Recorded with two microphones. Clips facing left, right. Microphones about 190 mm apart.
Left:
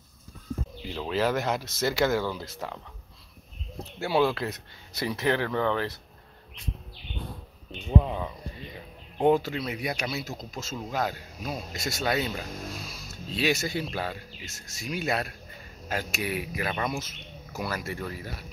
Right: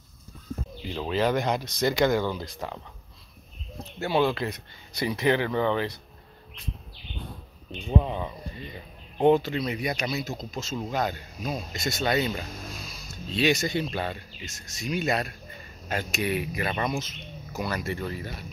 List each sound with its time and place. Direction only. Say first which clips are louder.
1.1 s speech: right 2 dB; 5° left (ahead or behind)
4.0 s speech: even; 5° left (ahead or behind)
8.0 s speech: right 1 dB; centre (ahead or behind)